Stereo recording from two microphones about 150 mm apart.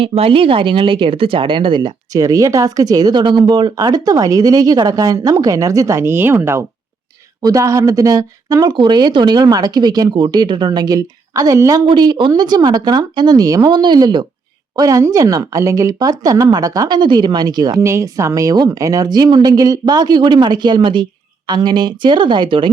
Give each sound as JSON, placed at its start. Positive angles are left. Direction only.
{"t": 0.0, "sound": "speech", "side_deg": -40}